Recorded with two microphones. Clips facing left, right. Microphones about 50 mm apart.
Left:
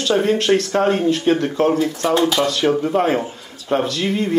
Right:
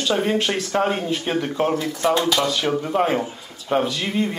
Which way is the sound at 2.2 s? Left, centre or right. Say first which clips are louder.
Left 3 dB; centre.